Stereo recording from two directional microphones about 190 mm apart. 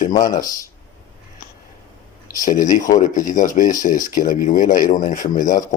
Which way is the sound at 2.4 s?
45° left (ahead or behind).